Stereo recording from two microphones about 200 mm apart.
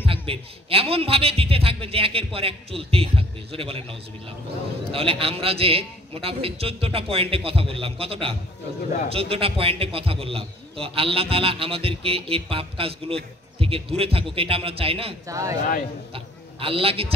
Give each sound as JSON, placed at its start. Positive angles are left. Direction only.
{"t": 0.0, "sound": "a man's voice", "side_deg": -25}
{"t": 4.9, "sound": "a man's voice", "side_deg": -30}
{"t": 15.2, "sound": "speech", "side_deg": -15}
{"t": 16.1, "sound": "a man's voice", "side_deg": -25}